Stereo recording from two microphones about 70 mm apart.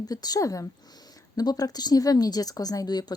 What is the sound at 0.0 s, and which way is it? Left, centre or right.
Speech, left.